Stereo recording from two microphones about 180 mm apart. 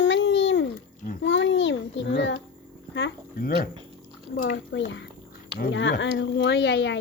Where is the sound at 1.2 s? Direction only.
90° left.